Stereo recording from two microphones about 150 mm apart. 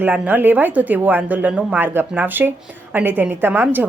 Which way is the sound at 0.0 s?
10° right (ahead or behind).